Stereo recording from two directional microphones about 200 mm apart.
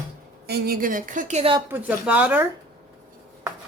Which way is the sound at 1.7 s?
5° right (ahead or behind).